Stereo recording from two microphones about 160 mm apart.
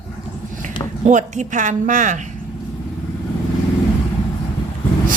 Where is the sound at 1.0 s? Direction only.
50° right (ahead or behind).